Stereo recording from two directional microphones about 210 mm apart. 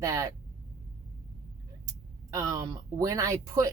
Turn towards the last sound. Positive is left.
turn(degrees=-15)  # may be behind; listen again after turning